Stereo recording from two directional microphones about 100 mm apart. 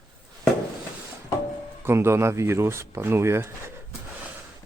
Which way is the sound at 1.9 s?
25° right (ahead or behind).